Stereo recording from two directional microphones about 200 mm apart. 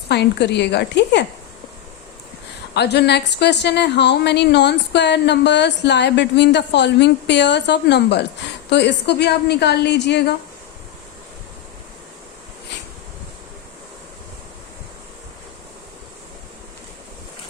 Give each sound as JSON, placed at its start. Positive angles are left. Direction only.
{"t": 0.1, "sound": "a woman's voice", "side_deg": 60}
{"t": 2.7, "sound": "a woman's voice", "side_deg": 55}